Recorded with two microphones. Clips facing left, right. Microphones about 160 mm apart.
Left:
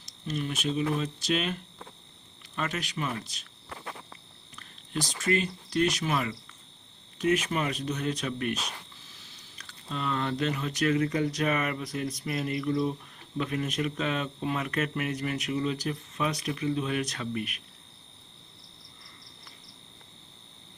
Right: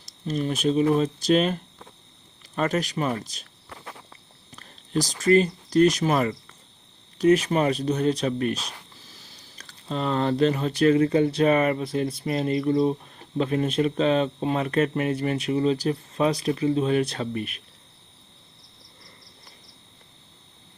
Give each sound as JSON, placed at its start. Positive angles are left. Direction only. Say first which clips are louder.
{"t": 0.3, "sound": "speech", "louder": "right 7 dB", "side_deg": -40}
{"t": 4.5, "sound": "speech", "louder": "right 8 dB", "side_deg": -40}